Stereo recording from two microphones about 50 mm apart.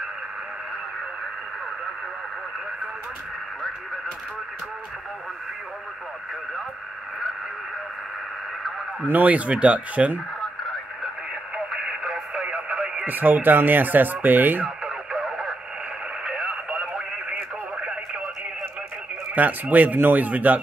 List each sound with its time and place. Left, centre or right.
9.1 s speech: right
11.5 s radio: centre
13.0 s speech: right
15.2 s radio: centre
19.3 s speech: right